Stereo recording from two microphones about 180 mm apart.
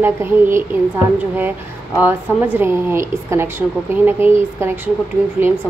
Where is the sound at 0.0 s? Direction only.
15° right (ahead or behind).